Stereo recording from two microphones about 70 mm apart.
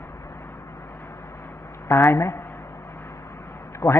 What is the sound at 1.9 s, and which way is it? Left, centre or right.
Speech, left.